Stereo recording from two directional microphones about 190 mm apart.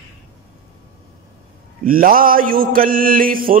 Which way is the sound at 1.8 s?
50° right (ahead or behind).